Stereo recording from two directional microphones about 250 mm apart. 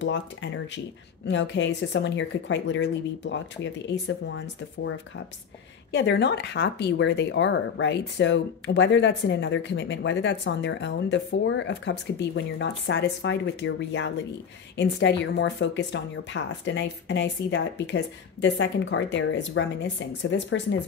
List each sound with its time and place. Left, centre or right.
0.0 s speech: left